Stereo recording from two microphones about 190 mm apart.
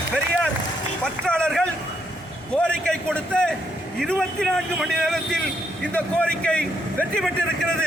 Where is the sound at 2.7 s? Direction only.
5° left (ahead or behind).